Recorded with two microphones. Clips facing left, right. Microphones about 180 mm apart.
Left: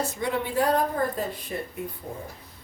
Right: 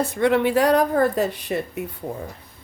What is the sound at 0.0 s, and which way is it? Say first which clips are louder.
Speech: right 9 dB; 65° right (ahead or behind).